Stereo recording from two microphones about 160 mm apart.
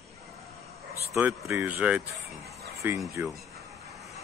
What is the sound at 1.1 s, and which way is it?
Speech, 10° right (ahead or behind).